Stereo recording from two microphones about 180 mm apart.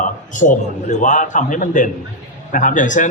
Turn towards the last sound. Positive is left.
turn(degrees=45)  # may be behind; listen again after turning